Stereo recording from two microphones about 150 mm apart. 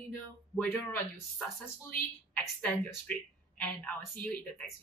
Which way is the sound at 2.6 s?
10° left (ahead or behind).